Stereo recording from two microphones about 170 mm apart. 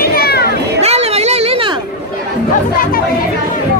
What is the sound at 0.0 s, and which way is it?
Children playing, 60° left (ahead or behind).